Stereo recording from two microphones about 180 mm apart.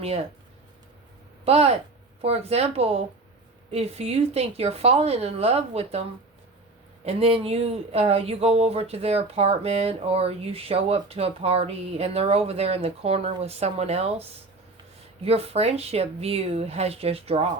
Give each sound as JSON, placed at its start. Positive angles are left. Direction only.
{"t": 0.0, "sound": "speech", "side_deg": -35}
{"t": 1.5, "sound": "speech", "side_deg": -35}
{"t": 7.0, "sound": "speech", "side_deg": -35}